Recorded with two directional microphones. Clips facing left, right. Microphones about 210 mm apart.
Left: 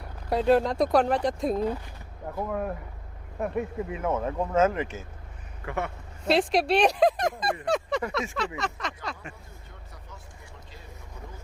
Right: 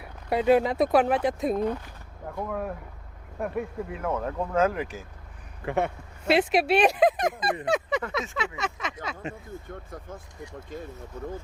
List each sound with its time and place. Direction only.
0.0 s speech: 5° right (ahead or behind)
5.6 s speech: 20° right (ahead or behind)
6.2 s speech: 5° right (ahead or behind)
7.6 s a sound: centre (ahead or behind)
8.1 s speech: centre (ahead or behind)
9.6 s speech: 50° right (ahead or behind)